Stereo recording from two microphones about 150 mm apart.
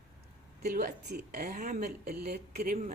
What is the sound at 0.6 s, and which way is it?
A woman's voice, 80° right.